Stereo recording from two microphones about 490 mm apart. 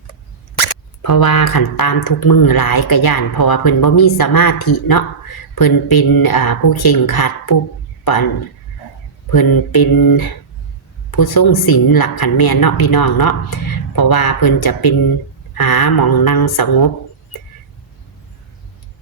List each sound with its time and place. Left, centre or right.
1.0 s speech: left
9.3 s speech: left